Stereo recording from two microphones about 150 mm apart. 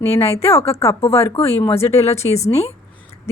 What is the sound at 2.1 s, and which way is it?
Speech, 45° left (ahead or behind).